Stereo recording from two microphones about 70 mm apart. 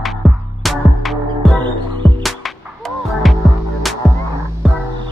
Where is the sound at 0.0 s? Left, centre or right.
Centre.